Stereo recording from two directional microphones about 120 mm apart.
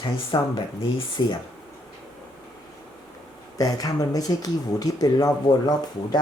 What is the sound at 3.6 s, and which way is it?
Speech, 30° left (ahead or behind).